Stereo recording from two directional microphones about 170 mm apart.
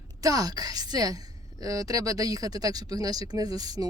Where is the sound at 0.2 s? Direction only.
20° right (ahead or behind).